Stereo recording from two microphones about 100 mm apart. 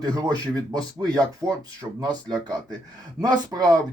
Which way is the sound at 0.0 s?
40° right (ahead or behind).